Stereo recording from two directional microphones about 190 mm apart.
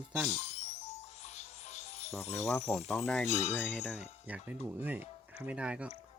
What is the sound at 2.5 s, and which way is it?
Speech, centre (ahead or behind).